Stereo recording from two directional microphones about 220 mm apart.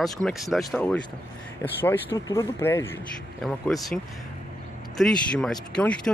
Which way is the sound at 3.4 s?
Centre (ahead or behind).